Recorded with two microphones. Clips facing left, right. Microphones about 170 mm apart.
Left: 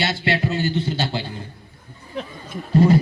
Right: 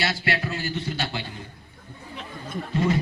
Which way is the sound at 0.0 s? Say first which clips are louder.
Left 5 dB; 25° left (ahead or behind).